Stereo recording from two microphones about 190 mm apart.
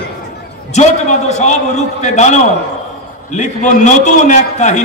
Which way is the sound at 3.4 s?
40° left (ahead or behind).